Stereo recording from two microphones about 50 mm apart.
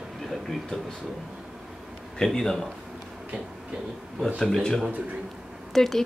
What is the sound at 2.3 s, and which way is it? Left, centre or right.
Speech, centre.